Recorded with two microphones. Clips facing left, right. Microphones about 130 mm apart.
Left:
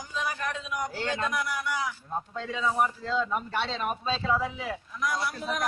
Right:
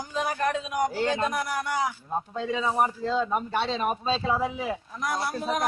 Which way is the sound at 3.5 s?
15° right (ahead or behind).